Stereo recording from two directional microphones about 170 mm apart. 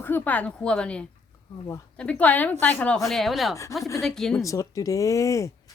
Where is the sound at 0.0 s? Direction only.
10° left (ahead or behind).